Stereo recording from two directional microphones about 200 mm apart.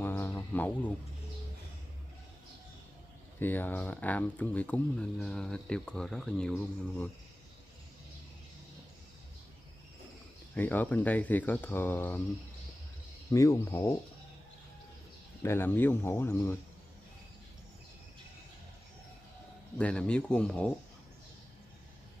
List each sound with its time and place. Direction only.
0.0 s a sound: 10° left (ahead or behind)
3.3 s speech: 10° left (ahead or behind)
10.5 s speech: 10° left (ahead or behind)
13.3 s speech: 15° left (ahead or behind)
15.4 s speech: 10° left (ahead or behind)
19.8 s speech: 5° left (ahead or behind)